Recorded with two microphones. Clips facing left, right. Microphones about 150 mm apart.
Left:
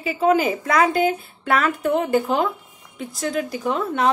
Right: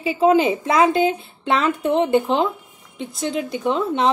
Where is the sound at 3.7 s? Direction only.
25° right (ahead or behind).